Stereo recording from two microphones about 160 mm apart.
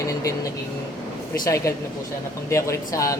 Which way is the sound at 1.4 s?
20° left (ahead or behind).